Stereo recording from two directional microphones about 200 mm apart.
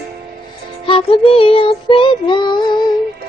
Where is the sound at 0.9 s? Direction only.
25° left (ahead or behind).